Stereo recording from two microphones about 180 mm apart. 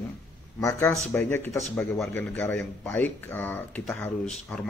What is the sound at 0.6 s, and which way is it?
Speech, 15° left (ahead or behind).